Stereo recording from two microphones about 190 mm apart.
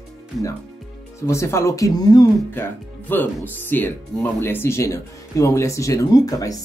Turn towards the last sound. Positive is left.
turn(degrees=20)  # may be behind; listen again after turning